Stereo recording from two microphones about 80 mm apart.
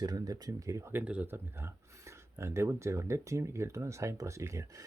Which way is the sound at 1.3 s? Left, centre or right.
Right.